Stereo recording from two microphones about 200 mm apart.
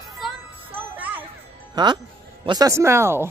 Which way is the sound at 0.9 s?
10° right (ahead or behind).